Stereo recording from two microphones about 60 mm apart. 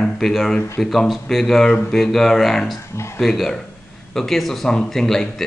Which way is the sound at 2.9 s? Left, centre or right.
Left.